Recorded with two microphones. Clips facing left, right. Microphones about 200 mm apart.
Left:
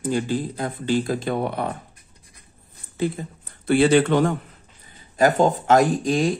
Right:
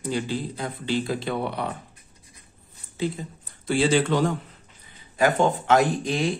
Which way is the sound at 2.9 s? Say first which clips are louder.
Left 3 dB; 55° left (ahead or behind).